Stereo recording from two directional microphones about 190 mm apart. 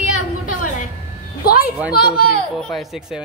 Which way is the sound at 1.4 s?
55° left (ahead or behind).